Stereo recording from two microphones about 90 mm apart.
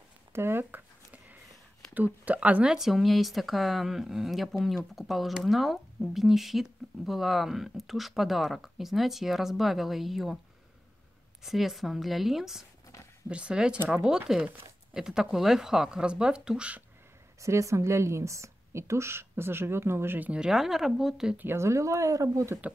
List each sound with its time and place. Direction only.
0.3 s a sound: 25° right (ahead or behind)
2.0 s speech: 15° right (ahead or behind)
11.4 s speech: centre (ahead or behind)
17.4 s a woman's voice: 35° right (ahead or behind); by 21.4 s 5° right (ahead or behind)
21.4 s speech: 25° right (ahead or behind)